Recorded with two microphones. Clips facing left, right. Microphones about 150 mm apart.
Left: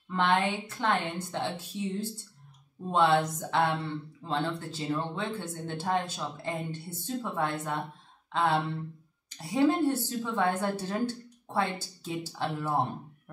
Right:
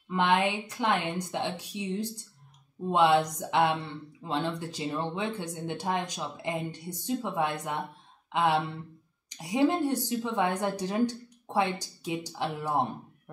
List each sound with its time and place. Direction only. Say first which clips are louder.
0.1 s speech: right 1 dB; 10° right (ahead or behind)